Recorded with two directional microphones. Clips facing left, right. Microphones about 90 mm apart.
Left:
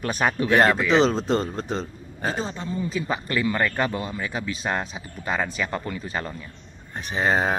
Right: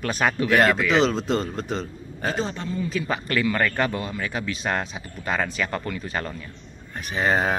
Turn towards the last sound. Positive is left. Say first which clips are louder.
# even
turn(degrees=20)  # may be behind; listen again after turning